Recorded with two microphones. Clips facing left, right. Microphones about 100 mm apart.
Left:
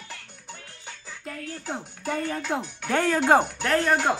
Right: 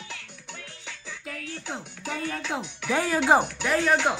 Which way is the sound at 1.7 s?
Centre (ahead or behind).